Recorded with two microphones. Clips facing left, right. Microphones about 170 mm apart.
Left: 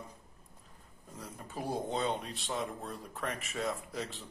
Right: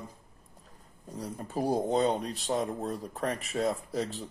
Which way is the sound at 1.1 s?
35° right (ahead or behind).